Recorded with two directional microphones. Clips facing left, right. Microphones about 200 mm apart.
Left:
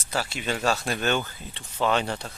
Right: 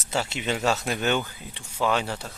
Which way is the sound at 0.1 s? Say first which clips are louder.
Right 1 dB; 25° right (ahead or behind).